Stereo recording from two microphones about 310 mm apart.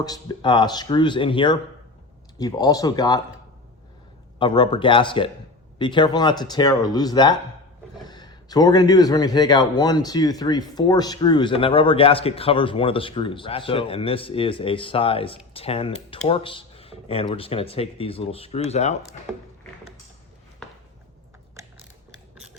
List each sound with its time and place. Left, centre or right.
0.0 s speech: centre
4.4 s speech: centre
21.5 s mechanisms: centre